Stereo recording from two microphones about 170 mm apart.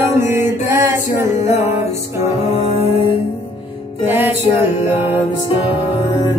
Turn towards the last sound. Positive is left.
turn(degrees=-10)  # may be behind; listen again after turning